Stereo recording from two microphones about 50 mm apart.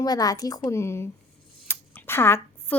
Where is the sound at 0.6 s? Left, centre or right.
Left.